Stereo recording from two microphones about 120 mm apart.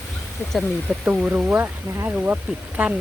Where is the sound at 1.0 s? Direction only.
10° right (ahead or behind).